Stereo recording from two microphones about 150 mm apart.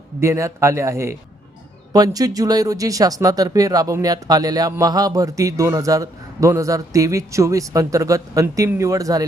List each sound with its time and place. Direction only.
0.2 s speech: 20° right (ahead or behind)